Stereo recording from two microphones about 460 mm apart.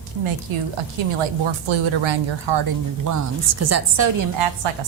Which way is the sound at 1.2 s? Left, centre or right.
Right.